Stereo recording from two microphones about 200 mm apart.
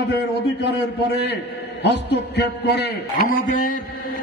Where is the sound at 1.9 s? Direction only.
60° left (ahead or behind); by 3.8 s 45° left (ahead or behind).